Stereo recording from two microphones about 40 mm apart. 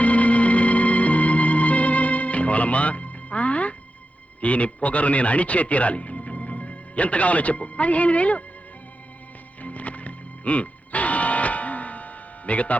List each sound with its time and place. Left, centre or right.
0.0 s music: left
4.4 s a man's voice: left
9.6 s music: left